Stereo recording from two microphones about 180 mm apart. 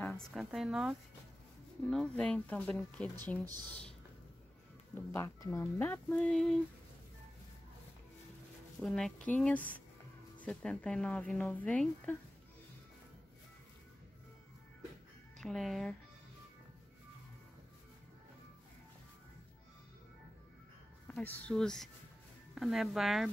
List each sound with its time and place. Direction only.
0.0 s speech: centre (ahead or behind)
4.9 s speech: 15° left (ahead or behind)
8.8 s speech: 5° left (ahead or behind)
15.4 s speech: centre (ahead or behind)
21.1 s speech: 10° left (ahead or behind)